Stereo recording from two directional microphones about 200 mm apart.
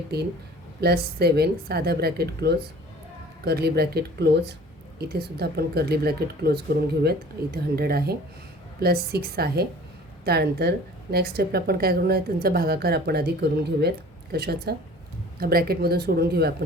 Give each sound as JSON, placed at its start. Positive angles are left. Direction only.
{"t": 0.1, "sound": "a woman's voice", "side_deg": -50}